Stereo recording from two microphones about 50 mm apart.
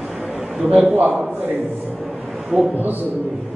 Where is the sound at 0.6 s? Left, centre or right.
Right.